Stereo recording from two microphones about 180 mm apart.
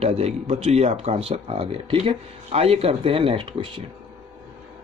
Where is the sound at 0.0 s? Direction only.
35° right (ahead or behind).